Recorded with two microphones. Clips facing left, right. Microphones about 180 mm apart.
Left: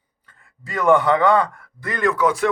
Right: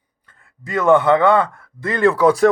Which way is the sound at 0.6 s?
20° right (ahead or behind).